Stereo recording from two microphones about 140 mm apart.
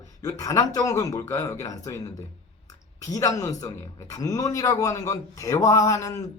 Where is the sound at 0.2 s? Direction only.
25° left (ahead or behind).